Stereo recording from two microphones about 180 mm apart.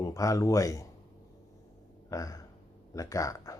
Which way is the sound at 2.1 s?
20° left (ahead or behind).